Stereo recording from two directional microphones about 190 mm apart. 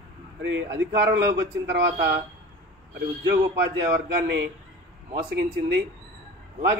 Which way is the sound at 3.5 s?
65° right (ahead or behind).